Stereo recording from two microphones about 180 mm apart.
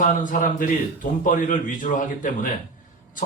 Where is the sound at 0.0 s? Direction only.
45° left (ahead or behind).